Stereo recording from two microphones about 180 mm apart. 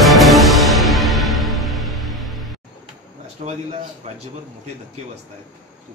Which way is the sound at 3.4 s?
40° right (ahead or behind).